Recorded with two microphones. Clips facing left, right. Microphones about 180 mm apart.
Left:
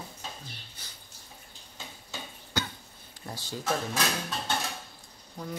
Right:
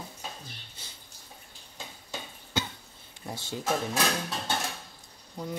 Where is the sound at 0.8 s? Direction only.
25° right (ahead or behind).